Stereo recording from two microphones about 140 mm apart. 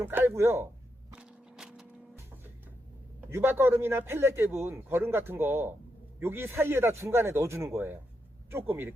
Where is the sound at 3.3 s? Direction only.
15° right (ahead or behind).